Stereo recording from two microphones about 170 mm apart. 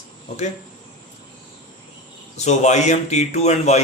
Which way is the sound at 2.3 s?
40° left (ahead or behind).